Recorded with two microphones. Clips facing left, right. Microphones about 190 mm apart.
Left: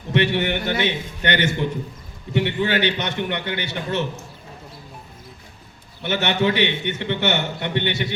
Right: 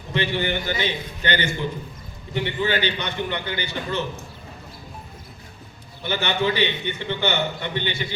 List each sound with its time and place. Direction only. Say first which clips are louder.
0.1 s a man's voice: left 4 dB; 70° left (ahead or behind)
6.0 s a man's voice: left 3 dB; 70° left (ahead or behind)